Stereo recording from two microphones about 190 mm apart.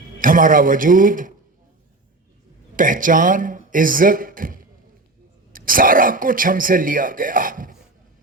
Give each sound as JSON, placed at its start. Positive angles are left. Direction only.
{"t": 0.2, "sound": "speech", "side_deg": -45}
{"t": 2.7, "sound": "speech", "side_deg": -45}